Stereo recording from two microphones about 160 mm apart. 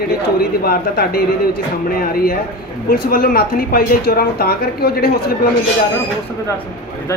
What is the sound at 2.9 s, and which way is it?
Speech, 70° left (ahead or behind).